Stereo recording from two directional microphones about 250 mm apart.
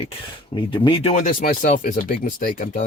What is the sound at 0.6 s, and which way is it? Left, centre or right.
Speech, centre.